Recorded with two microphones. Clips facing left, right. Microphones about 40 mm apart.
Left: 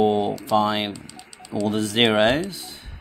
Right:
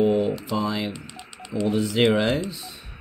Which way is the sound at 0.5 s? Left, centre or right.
Left.